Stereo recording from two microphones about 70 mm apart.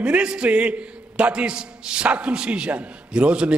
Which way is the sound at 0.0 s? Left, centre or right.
Centre.